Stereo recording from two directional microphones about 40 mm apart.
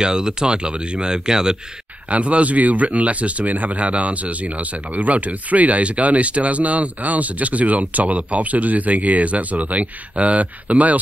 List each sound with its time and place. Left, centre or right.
0.0 s speech: centre
2.0 s speech: right